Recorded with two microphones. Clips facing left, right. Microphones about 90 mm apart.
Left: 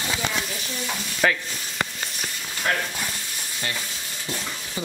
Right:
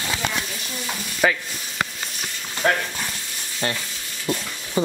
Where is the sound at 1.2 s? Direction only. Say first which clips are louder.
Right 2 dB; 10° right (ahead or behind).